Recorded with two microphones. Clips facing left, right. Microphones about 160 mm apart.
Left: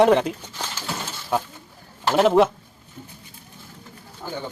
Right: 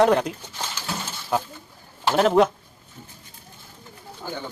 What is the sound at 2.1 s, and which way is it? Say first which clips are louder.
Speech: left 1 dB; centre (ahead or behind).